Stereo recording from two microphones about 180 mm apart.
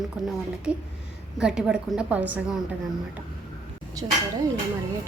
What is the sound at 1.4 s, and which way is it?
A woman's voice, 5° right (ahead or behind).